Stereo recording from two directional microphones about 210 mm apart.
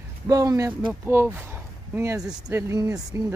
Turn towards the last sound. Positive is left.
turn(degrees=-15)  # may be behind; listen again after turning